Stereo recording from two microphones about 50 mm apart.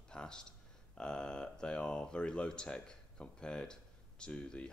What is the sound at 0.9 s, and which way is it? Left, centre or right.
Speech, centre.